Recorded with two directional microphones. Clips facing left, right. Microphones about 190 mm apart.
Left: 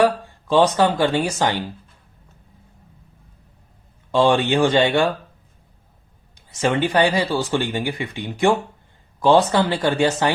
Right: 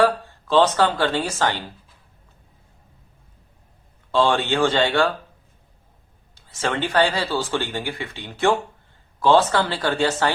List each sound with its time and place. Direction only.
0.0 s speech: 15° left (ahead or behind)
4.1 s speech: 15° left (ahead or behind)
6.3 s speech: 15° left (ahead or behind)